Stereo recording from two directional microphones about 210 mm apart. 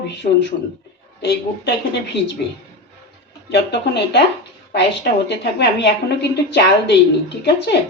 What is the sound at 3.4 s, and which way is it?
A woman's voice, 55° left (ahead or behind).